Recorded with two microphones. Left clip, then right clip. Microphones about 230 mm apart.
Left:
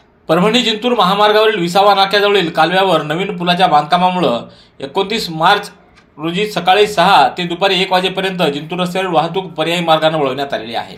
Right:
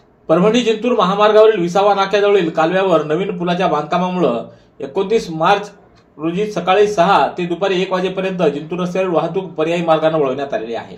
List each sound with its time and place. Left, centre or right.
0.3 s speech: left
5.4 s speech: left